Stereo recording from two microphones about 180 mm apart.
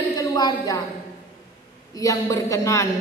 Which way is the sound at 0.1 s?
20° left (ahead or behind).